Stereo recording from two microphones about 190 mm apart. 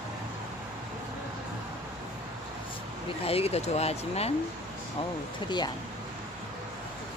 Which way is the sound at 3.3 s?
30° left (ahead or behind).